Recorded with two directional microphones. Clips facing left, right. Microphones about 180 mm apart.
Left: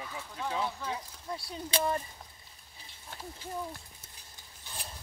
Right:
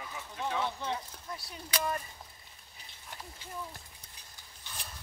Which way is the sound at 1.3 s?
25° left (ahead or behind).